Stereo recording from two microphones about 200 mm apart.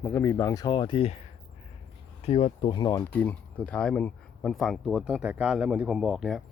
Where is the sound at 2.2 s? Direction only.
30° left (ahead or behind).